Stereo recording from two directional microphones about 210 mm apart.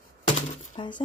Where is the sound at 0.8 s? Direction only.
20° left (ahead or behind).